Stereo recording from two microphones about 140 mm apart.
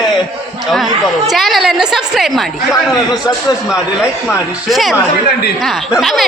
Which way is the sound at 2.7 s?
30° left (ahead or behind).